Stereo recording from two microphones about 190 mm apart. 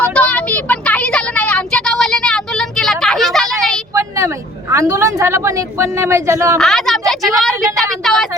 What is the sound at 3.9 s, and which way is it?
Speech, 15° right (ahead or behind).